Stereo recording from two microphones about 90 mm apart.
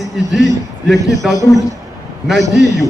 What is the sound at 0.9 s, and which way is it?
Speech, centre (ahead or behind).